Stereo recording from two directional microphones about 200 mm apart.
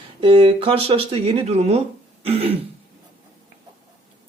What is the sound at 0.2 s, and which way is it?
Speech, 25° right (ahead or behind).